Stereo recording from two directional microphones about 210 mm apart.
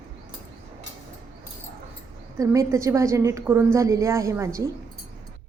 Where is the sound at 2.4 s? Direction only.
15° right (ahead or behind).